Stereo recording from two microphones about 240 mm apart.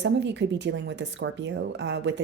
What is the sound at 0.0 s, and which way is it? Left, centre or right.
Speech, right.